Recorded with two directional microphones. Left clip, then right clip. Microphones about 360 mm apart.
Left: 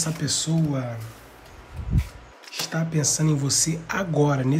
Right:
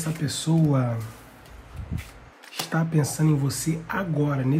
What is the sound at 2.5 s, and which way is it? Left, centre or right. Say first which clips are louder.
Speech: right 1 dB; centre.